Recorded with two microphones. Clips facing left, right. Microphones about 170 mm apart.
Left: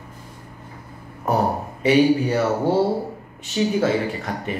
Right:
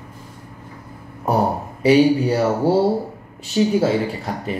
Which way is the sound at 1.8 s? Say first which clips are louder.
Right 2 dB; 35° right (ahead or behind).